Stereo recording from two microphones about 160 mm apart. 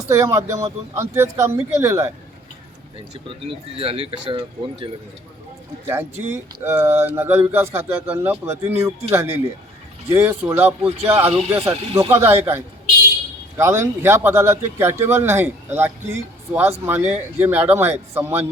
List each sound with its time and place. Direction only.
0.1 s speech: 20° right (ahead or behind)
3.2 s speech: 35° right (ahead or behind)
5.9 s speech: 15° right (ahead or behind)